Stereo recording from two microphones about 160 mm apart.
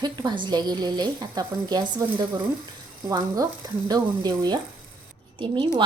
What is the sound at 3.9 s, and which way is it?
Speech, 25° right (ahead or behind).